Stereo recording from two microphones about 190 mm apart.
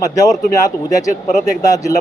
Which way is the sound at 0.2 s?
15° left (ahead or behind).